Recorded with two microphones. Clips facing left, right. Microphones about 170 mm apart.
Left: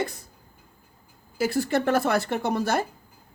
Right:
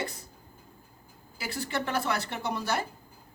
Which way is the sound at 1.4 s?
50° left (ahead or behind).